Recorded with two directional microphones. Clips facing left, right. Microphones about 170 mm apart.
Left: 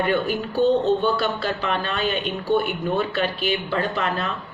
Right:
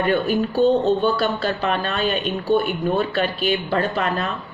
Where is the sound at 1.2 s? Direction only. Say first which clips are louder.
Right 3 dB; 40° right (ahead or behind).